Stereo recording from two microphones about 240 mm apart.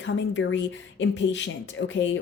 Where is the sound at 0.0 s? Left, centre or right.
Left.